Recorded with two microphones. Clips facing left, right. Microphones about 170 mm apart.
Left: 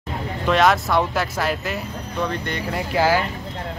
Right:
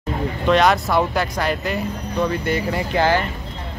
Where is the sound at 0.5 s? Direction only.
Centre (ahead or behind).